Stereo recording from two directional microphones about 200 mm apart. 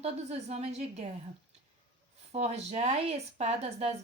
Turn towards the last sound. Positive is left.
turn(degrees=-30)  # may be behind; listen again after turning